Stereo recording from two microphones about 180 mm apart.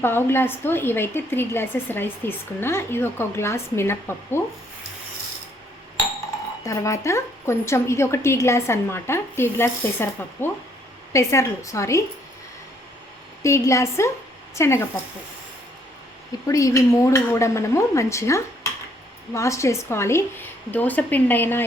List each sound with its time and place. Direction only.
0.0 s a woman's voice: 10° left (ahead or behind)
6.7 s a woman's voice: 15° left (ahead or behind)
13.4 s a woman's voice: 15° left (ahead or behind)
16.5 s a woman's voice: 20° left (ahead or behind)